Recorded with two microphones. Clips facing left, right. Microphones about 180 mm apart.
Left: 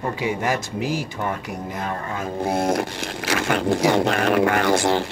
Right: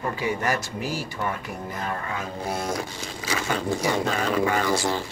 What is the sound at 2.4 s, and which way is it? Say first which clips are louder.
Speech: left 9 dB; 55° left (ahead or behind).